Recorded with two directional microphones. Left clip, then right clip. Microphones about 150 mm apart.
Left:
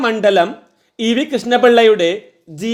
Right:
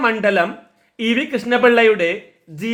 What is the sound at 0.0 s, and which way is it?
Speech, 35° left (ahead or behind).